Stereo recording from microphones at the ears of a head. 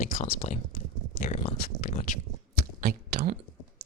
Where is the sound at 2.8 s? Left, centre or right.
Right.